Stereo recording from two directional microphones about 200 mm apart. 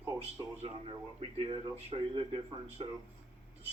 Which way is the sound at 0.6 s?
30° right (ahead or behind).